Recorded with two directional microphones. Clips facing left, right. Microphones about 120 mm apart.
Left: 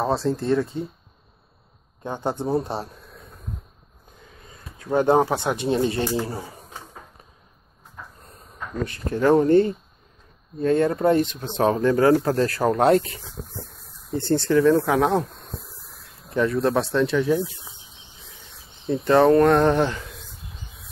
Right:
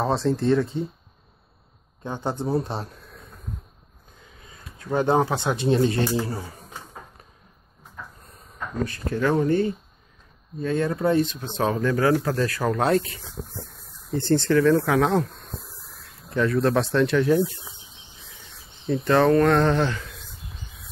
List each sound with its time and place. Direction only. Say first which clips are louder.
0.0 s speech: right 1 dB; 5° left (ahead or behind)
2.0 s speech: left 2 dB; 15° left (ahead or behind)
4.8 s speech: left 3 dB; 10° left (ahead or behind)
5.8 s speech: right 1 dB; 25° left (ahead or behind)
9.2 s speech: left 5 dB; 35° left (ahead or behind)
14.1 s speech: even; 10° left (ahead or behind)
16.3 s speech: even; 20° left (ahead or behind)
16.8 s speech: right 1 dB; 5° left (ahead or behind)
18.9 s speech: left 2 dB; 20° left (ahead or behind)